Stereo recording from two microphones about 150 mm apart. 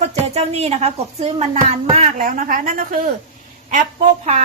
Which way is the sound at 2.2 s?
70° right (ahead or behind).